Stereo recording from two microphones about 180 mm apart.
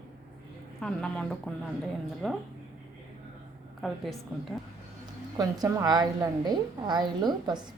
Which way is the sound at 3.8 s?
Centre (ahead or behind).